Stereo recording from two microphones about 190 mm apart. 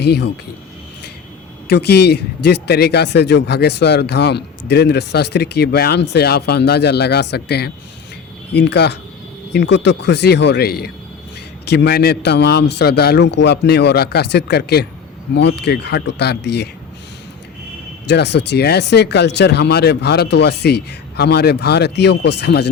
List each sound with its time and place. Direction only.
0.0 s speech: 60° left (ahead or behind)
1.6 s speech: 60° left (ahead or behind)
18.1 s speech: 65° left (ahead or behind)